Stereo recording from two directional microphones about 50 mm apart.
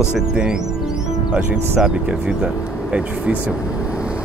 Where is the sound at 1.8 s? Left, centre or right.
Centre.